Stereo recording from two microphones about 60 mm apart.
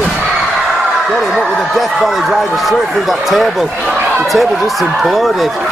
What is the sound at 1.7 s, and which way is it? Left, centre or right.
Speech, centre.